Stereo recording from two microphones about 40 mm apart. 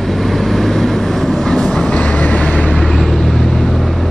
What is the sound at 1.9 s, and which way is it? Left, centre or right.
Vehicle, left.